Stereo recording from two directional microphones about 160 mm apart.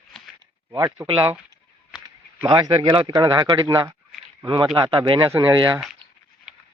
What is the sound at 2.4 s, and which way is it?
Speech, 25° right (ahead or behind).